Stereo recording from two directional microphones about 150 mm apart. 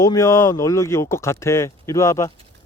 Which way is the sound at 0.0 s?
20° left (ahead or behind).